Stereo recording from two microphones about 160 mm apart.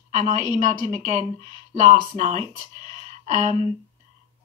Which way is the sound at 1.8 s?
50° right (ahead or behind).